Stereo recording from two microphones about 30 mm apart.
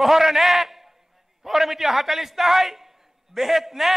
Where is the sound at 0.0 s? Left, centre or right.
Centre.